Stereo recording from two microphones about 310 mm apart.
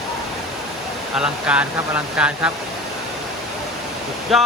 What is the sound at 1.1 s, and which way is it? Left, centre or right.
Speech, centre.